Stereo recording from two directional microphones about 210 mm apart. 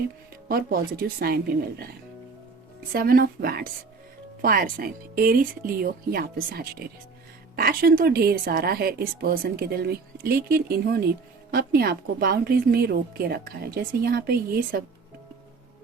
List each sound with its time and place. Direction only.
0.4 s a woman's voice: 45° right (ahead or behind)
2.9 s a woman's voice: 45° right (ahead or behind)